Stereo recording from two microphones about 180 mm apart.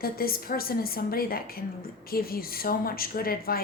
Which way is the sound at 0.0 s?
55° left (ahead or behind).